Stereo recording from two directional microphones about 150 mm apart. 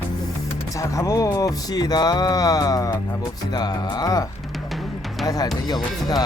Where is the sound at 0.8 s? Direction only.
20° left (ahead or behind).